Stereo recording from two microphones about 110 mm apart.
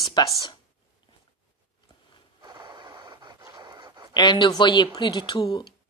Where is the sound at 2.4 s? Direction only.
40° right (ahead or behind).